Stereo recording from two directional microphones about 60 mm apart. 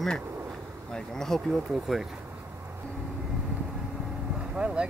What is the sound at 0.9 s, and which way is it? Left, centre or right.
Speech, centre.